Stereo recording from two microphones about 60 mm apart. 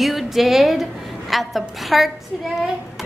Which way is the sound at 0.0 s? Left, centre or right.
Centre.